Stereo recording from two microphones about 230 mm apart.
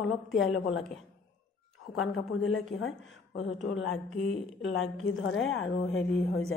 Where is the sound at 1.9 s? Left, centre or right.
Left.